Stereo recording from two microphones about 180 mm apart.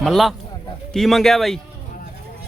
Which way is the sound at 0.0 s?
Centre (ahead or behind).